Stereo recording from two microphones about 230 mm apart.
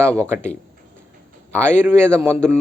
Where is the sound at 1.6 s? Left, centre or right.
Centre.